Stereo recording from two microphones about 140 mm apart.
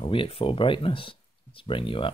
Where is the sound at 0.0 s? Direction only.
40° left (ahead or behind).